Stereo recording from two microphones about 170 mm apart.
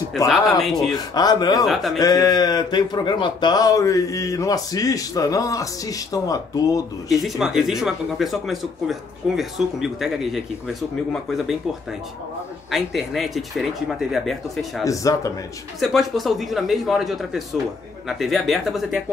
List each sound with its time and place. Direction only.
0.3 s speech: centre (ahead or behind)
0.9 s speech: 25° left (ahead or behind)
1.7 s speech: centre (ahead or behind)
2.0 s speech: 20° left (ahead or behind)
7.1 s speech: centre (ahead or behind)
12.7 s speech: centre (ahead or behind)
14.9 s speech: 20° left (ahead or behind)
15.8 s speech: centre (ahead or behind)